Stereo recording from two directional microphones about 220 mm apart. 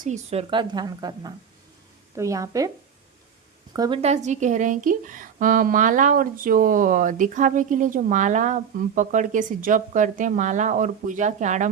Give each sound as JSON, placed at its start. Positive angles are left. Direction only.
{"t": 0.0, "sound": "a woman's voice", "side_deg": -30}
{"t": 3.7, "sound": "speech", "side_deg": -20}